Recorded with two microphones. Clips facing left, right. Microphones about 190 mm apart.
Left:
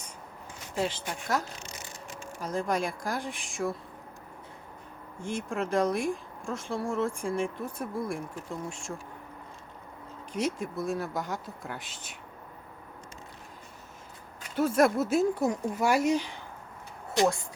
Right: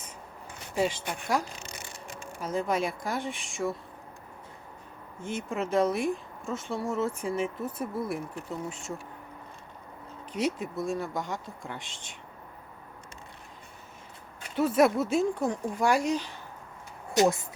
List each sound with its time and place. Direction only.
0.8 s speech: 10° right (ahead or behind)
5.2 s speech: 5° right (ahead or behind)
10.3 s speech: 5° right (ahead or behind)
14.5 s speech: centre (ahead or behind)
17.2 s speech: 20° right (ahead or behind)